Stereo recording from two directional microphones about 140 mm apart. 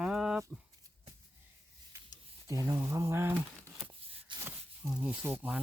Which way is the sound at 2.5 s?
20° right (ahead or behind).